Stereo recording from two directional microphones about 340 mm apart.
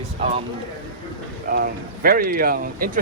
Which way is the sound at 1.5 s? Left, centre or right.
Right.